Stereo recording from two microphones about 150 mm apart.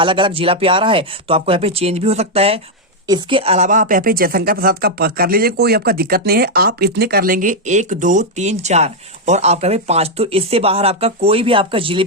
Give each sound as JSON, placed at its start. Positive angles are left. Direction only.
{"t": 0.0, "sound": "speech", "side_deg": -35}